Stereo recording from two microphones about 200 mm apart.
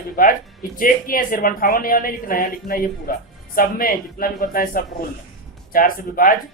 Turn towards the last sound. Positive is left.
turn(degrees=45)  # may be behind; listen again after turning